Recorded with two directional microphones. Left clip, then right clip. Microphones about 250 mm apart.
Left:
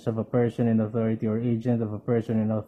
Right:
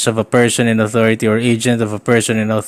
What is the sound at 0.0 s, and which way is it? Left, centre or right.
Speech, right.